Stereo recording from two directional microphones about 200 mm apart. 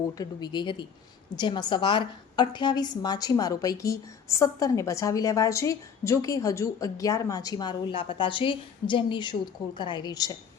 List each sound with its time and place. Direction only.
0.1 s a woman's voice: 20° left (ahead or behind)